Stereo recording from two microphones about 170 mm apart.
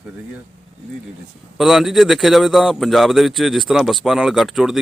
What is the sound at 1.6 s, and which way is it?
Speech, centre (ahead or behind).